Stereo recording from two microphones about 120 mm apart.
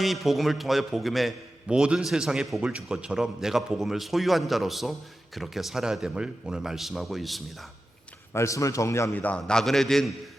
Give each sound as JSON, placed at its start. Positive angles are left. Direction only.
{"t": 0.0, "sound": "a man's voice", "side_deg": 0}
{"t": 8.3, "sound": "a man's voice", "side_deg": 25}
{"t": 9.1, "sound": "a man's voice", "side_deg": 10}